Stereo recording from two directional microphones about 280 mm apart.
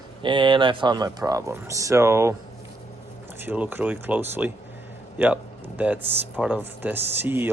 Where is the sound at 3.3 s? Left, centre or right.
Centre.